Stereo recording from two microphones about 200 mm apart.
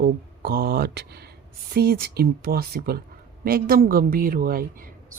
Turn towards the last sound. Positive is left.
turn(degrees=-45)  # may be behind; listen again after turning